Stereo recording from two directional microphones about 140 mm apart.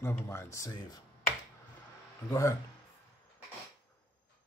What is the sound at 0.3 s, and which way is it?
Speech, 20° left (ahead or behind).